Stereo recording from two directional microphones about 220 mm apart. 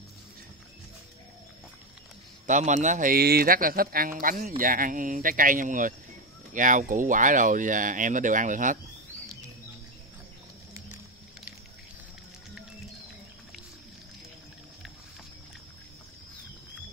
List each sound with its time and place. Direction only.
2.4 s speech: 35° right (ahead or behind)